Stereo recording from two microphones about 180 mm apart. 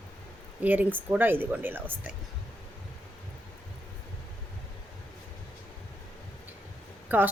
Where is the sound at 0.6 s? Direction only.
10° right (ahead or behind).